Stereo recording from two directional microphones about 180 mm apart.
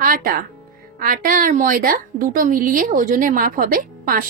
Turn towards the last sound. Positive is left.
turn(degrees=-50)  # may be behind; listen again after turning